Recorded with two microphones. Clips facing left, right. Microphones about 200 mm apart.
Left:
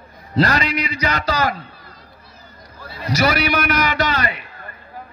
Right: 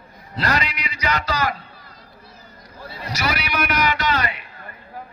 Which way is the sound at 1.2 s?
35° left (ahead or behind).